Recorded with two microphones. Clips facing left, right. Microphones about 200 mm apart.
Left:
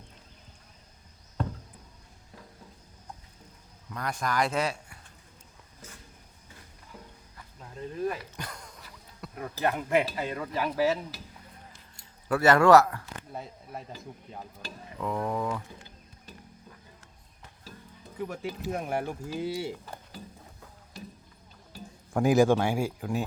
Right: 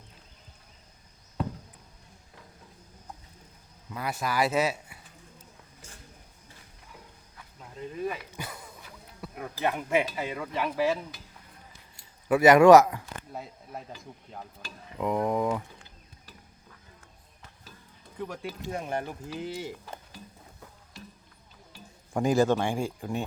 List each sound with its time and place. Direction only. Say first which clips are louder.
1.4 s a sound: right 1 dB; 5° right (ahead or behind)
3.8 s speech: even; 5° right (ahead or behind)
7.8 s a sound: left 1 dB; 5° right (ahead or behind)
10.2 s speech: even; centre (ahead or behind)
12.3 s speech: right 4 dB; 15° right (ahead or behind)
13.3 s speech: left 1 dB; centre (ahead or behind)
15.0 s speech: right 4 dB; 15° right (ahead or behind)
18.2 s speech: left 2 dB; 5° left (ahead or behind)
22.1 s speech: left 2 dB; 5° left (ahead or behind)